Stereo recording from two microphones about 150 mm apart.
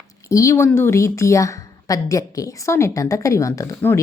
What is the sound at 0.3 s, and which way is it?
A woman's voice, 20° left (ahead or behind).